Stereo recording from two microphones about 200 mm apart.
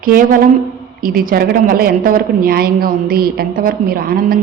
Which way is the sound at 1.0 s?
45° right (ahead or behind).